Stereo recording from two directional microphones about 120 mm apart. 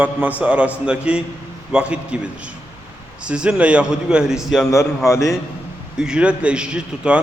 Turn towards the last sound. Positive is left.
turn(degrees=-10)  # may be behind; listen again after turning